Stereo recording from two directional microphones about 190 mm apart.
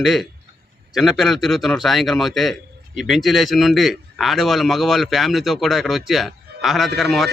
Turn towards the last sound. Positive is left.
turn(degrees=0)  # may be behind; listen again after turning